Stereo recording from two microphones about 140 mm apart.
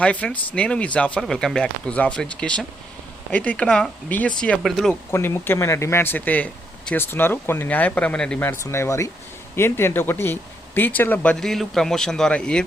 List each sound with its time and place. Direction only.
0.0 s speech: 10° left (ahead or behind)
5.1 s speech: 20° left (ahead or behind)
8.4 s speech: 20° left (ahead or behind)